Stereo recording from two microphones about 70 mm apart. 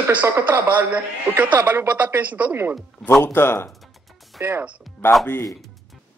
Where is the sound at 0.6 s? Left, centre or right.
Right.